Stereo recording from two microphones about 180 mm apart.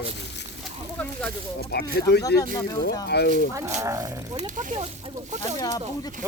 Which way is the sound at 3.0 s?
65° left (ahead or behind).